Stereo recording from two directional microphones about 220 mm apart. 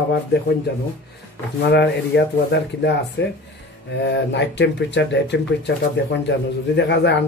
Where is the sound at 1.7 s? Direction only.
50° left (ahead or behind).